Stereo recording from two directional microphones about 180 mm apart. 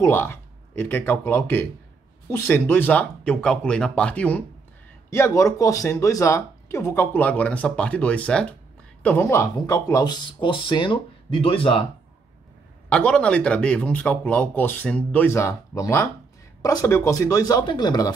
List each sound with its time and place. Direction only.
0.0 s speech: 15° left (ahead or behind); by 11.8 s 30° left (ahead or behind)
12.9 s speech: 5° left (ahead or behind); by 18.1 s 20° left (ahead or behind)